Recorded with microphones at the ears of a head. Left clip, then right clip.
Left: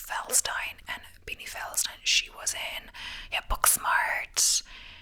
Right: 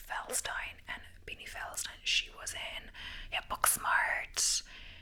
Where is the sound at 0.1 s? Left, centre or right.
Left.